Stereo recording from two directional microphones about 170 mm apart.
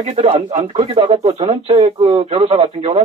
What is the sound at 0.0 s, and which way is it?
Speech, 35° right (ahead or behind).